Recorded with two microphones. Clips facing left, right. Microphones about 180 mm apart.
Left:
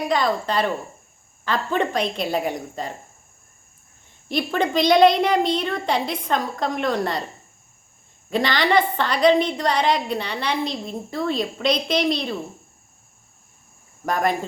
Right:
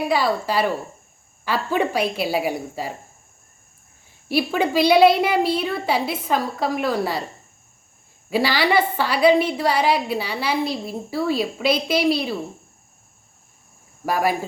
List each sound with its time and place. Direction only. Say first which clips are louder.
0.0 s a woman's voice: right 1 dB; 5° right (ahead or behind)
4.3 s a child's voice: right 2 dB; 5° right (ahead or behind)
8.3 s a woman's voice: right 1 dB; 5° right (ahead or behind)
14.0 s a woman's voice: right 1 dB; 5° right (ahead or behind)